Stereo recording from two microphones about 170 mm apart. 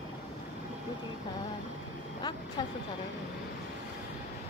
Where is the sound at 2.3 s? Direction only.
25° left (ahead or behind).